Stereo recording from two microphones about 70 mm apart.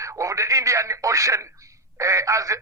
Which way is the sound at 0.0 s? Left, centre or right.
Right.